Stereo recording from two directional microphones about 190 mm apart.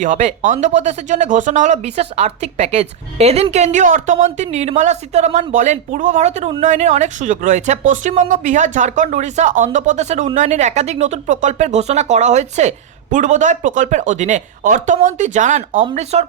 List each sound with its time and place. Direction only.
0.0 s speech: 40° right (ahead or behind)